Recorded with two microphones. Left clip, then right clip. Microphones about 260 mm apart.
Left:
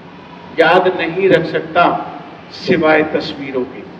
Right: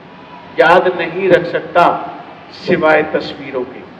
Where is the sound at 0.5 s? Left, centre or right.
Centre.